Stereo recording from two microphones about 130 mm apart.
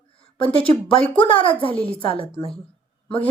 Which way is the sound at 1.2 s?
45° left (ahead or behind).